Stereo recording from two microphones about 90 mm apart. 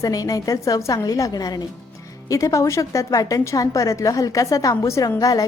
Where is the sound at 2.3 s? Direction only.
35° left (ahead or behind).